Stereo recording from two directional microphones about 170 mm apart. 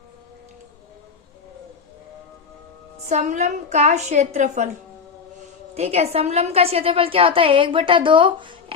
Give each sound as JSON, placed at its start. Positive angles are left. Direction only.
{"t": 3.1, "sound": "a woman's voice", "side_deg": -45}
{"t": 5.7, "sound": "a woman's voice", "side_deg": -40}